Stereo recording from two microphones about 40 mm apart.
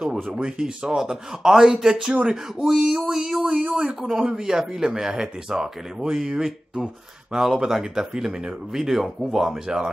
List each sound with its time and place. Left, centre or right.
0.0 s speech: centre